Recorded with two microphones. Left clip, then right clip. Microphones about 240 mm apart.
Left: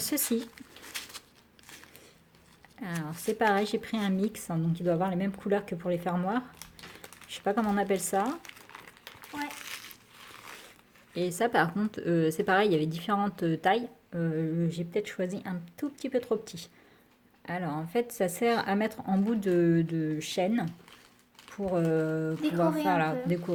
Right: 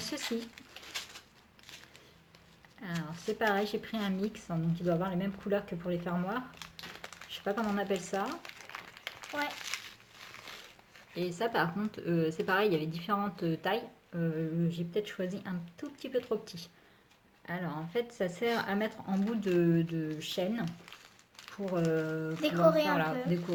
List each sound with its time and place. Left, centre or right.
0.1 s speech: left
2.8 s speech: left
7.4 s speech: left
11.1 s speech: left